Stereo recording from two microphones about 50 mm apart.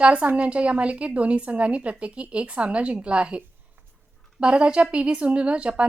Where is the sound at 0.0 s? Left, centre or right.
Right.